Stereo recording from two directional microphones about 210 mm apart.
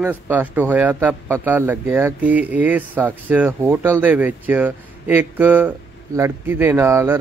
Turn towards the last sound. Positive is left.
turn(degrees=-10)  # may be behind; listen again after turning